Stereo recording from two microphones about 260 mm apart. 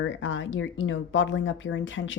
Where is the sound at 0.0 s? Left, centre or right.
Left.